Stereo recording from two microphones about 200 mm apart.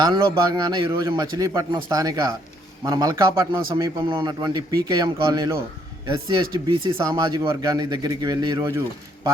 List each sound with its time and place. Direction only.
0.0 s a man's voice: 20° right (ahead or behind)